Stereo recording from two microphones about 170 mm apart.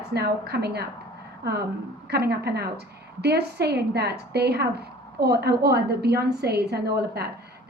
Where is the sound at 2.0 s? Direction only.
70° right (ahead or behind).